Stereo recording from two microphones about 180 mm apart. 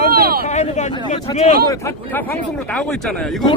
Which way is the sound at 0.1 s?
60° right (ahead or behind).